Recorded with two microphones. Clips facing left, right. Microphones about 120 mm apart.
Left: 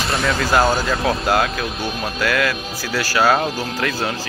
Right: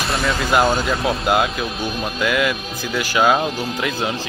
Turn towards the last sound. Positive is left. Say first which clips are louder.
# even
turn(degrees=-20)  # may be behind; listen again after turning